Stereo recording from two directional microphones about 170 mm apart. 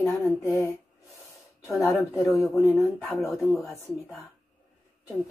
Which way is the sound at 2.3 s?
Centre (ahead or behind).